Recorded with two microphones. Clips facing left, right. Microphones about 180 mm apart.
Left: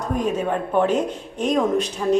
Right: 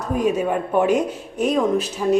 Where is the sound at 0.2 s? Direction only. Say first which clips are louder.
Right 4 dB; 10° right (ahead or behind).